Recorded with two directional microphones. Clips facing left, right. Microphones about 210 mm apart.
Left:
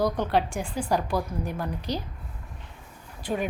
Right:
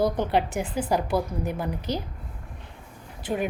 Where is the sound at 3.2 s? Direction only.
10° right (ahead or behind).